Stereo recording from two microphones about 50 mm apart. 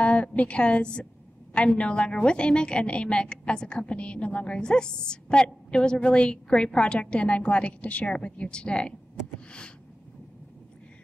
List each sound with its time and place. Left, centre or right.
0.0 s a woman's voice: left